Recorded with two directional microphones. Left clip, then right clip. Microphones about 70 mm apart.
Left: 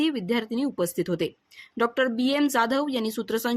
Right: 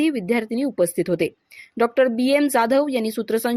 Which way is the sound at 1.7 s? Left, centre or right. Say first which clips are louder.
Right 6 dB; right.